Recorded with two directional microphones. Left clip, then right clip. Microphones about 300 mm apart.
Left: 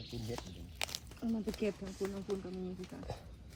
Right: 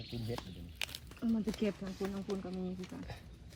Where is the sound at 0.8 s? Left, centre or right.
Left.